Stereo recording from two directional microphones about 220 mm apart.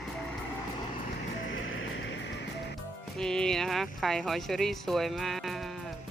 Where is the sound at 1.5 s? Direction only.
60° left (ahead or behind).